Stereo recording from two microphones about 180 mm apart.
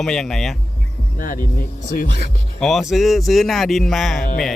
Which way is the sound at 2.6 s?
Centre (ahead or behind).